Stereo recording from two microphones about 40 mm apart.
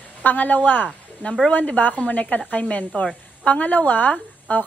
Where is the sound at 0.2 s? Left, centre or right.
Left.